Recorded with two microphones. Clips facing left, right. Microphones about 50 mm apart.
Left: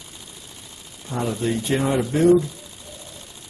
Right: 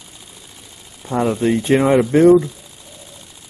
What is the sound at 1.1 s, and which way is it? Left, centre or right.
Speech, right.